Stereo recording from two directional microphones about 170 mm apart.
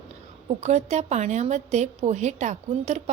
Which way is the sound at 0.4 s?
40° right (ahead or behind).